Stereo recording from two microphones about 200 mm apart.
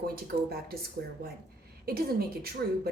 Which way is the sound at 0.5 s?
50° right (ahead or behind).